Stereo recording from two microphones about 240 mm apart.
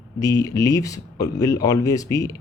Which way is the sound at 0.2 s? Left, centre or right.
Centre.